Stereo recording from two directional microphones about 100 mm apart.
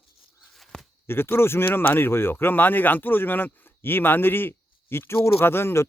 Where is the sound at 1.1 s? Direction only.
25° left (ahead or behind).